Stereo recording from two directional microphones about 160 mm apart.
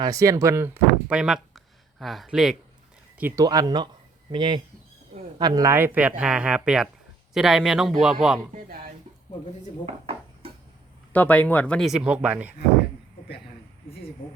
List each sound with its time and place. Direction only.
0.0 s speech: 20° right (ahead or behind); by 2.6 s centre (ahead or behind)
3.2 s speech: 15° right (ahead or behind)
3.4 s speech: 25° right (ahead or behind); by 8.4 s centre (ahead or behind)
9.8 s dishes: 40° right (ahead or behind)
11.1 s speech: 10° left (ahead or behind); by 12.5 s 10° right (ahead or behind)